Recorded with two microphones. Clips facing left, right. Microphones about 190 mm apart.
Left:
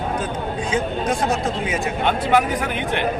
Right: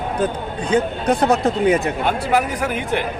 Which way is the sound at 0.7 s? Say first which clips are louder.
Right 5 dB; 65° right (ahead or behind).